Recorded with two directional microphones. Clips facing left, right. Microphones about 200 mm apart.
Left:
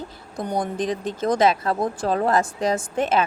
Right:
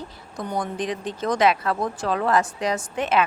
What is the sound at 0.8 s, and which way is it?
A woman's voice, 45° left (ahead or behind).